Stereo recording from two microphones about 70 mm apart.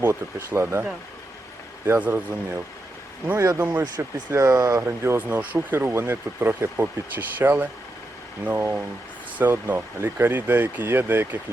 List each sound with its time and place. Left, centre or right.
0.0 s speech: right
1.9 s speech: right
3.3 s speech: right
3.6 s speech: right
4.3 s speech: right
4.8 s speech: right
5.2 s speech: right